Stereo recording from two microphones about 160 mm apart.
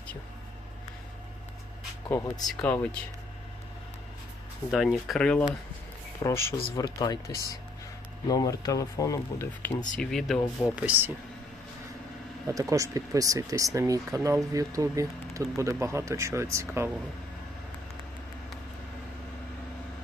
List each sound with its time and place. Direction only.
2.0 s speech: 15° left (ahead or behind)
4.7 s speech: centre (ahead or behind)
6.2 s speech: 15° left (ahead or behind)
10.0 s speech: centre (ahead or behind)
10.8 s speech: 10° right (ahead or behind)
12.5 s speech: 20° right (ahead or behind)